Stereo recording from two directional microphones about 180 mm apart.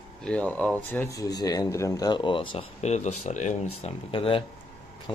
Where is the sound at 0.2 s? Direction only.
5° left (ahead or behind); by 3.9 s 40° left (ahead or behind).